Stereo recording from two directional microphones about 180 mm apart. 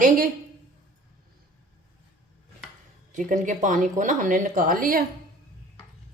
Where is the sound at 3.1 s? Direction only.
45° right (ahead or behind).